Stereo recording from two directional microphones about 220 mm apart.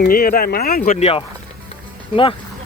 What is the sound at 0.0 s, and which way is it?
Speech, 45° left (ahead or behind).